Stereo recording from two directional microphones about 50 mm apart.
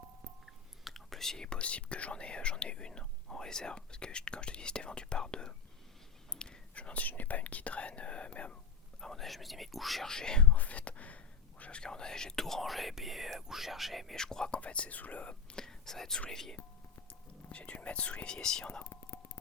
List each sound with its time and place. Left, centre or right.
0.4 s speech: centre; by 8.5 s left
9.0 s speech: centre
10.1 s speech: centre
10.5 s speech: left
11.6 s speech: centre
14.2 s speech: centre
14.6 s speech: left
15.5 s speech: centre
17.5 s speech: left